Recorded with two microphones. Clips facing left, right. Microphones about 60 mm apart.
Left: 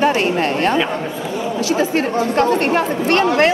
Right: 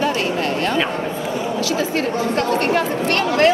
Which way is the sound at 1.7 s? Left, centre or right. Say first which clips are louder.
Left 5 dB; left.